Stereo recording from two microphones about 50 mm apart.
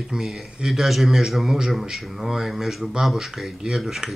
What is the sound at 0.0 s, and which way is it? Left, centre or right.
A man's voice, centre.